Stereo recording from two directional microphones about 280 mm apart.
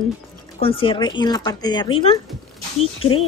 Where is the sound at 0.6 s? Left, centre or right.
Centre.